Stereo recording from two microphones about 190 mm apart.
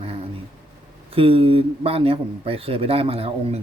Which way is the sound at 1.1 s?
30° right (ahead or behind).